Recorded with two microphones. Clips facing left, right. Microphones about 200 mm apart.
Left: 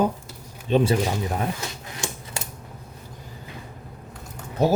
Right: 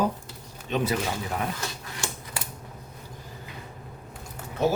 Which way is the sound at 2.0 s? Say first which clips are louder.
Left 3 dB; 20° left (ahead or behind).